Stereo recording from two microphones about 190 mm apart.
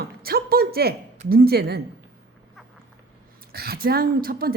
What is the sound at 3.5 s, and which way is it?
Speech, 55° right (ahead or behind).